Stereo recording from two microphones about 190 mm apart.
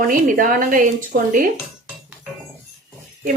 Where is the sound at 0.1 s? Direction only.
45° right (ahead or behind).